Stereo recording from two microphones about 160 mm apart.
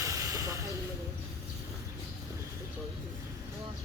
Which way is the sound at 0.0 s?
20° right (ahead or behind).